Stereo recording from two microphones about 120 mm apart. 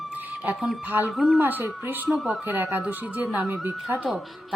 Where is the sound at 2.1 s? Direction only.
5° right (ahead or behind).